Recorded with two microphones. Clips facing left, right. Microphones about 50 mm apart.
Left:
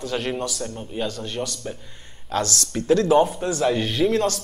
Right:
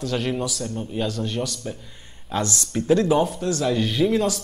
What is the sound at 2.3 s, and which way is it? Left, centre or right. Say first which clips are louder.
Speech: left 1 dB; centre.